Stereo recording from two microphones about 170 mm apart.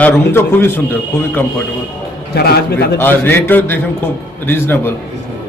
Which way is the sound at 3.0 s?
10° left (ahead or behind).